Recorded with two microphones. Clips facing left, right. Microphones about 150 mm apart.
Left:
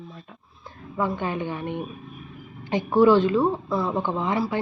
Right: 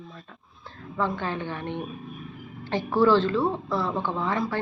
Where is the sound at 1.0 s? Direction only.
15° left (ahead or behind).